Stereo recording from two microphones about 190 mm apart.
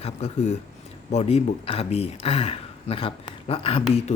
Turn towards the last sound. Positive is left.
turn(degrees=30)  # may be behind; listen again after turning